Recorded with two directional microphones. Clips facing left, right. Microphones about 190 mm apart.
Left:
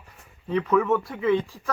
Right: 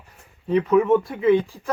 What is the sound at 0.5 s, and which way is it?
Speech, 20° right (ahead or behind).